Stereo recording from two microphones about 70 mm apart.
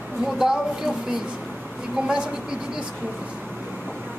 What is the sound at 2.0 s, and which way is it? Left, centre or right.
Speech, centre.